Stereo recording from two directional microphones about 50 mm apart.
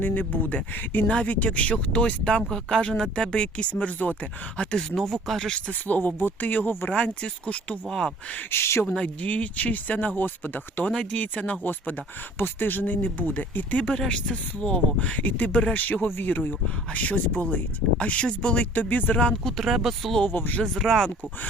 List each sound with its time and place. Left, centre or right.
0.0 s speech: left
4.9 s speech: centre
5.9 s speech: left
6.9 s speech: left
7.9 s speech: centre
8.4 s speech: left
9.2 s speech: left
10.9 s speech: left
11.6 s speech: left
13.9 s speech: centre
19.5 s speech: centre
20.2 s speech: left
20.7 s speech: centre